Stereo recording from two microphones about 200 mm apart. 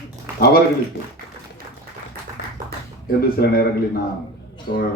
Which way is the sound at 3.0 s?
50° left (ahead or behind).